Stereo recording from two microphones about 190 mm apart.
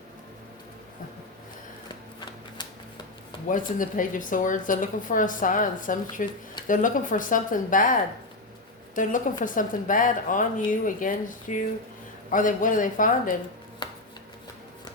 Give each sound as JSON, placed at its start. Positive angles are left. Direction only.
{"t": 3.5, "sound": "speech", "side_deg": 45}
{"t": 9.0, "sound": "speech", "side_deg": 45}
{"t": 13.8, "sound": "chopping", "side_deg": 25}